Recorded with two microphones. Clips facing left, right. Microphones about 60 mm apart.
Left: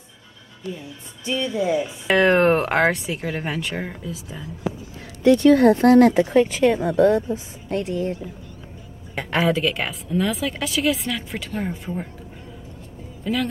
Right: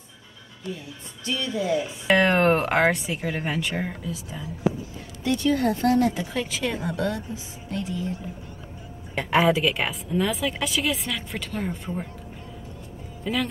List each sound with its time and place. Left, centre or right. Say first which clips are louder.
0.7 s speech: left 2 dB; centre
5.2 s speech: left 9 dB; left
6.3 s a woman's voice: left 11 dB; left
7.8 s speech: left 4 dB; left
9.1 s speech: right 1 dB; centre
13.2 s speech: left 3 dB; centre